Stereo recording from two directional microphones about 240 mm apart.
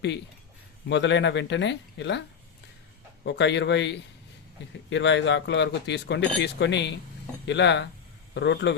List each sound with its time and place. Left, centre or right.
0.9 s speech: left
3.2 s a man's voice: left